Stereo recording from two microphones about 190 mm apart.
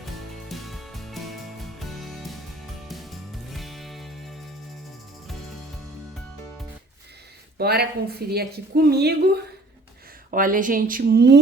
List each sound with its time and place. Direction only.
0.4 s music: centre (ahead or behind)
7.6 s speech: 55° right (ahead or behind)
10.3 s speech: 45° right (ahead or behind)